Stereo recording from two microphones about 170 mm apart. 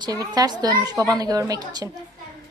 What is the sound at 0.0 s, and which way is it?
A woman's voice, 25° right (ahead or behind).